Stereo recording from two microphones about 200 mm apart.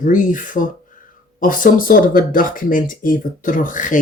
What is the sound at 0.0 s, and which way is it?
Speech, 40° left (ahead or behind).